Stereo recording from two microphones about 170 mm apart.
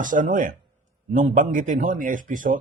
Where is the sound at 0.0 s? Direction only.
50° right (ahead or behind).